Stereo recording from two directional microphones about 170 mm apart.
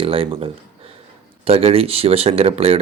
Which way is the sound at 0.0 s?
35° right (ahead or behind).